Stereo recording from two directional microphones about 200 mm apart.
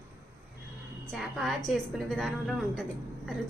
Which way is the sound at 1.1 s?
Centre (ahead or behind).